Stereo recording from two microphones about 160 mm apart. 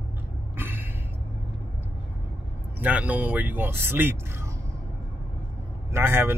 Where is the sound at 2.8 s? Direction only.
10° right (ahead or behind).